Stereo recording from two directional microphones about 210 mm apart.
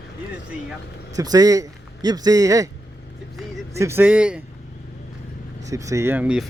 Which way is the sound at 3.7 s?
15° right (ahead or behind).